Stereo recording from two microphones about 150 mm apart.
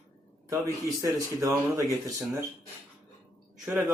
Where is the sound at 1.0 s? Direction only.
20° right (ahead or behind).